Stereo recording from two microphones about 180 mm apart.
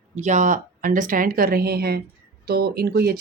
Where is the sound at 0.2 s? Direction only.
45° right (ahead or behind).